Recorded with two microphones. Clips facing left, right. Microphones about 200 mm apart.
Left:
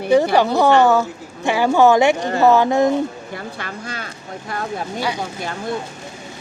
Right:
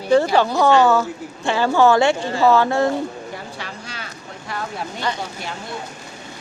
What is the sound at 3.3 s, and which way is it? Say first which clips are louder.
Speech: left 3 dB; 50° left (ahead or behind).